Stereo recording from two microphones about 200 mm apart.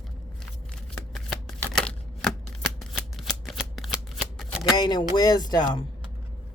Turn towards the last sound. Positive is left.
turn(degrees=20)  # may be behind; listen again after turning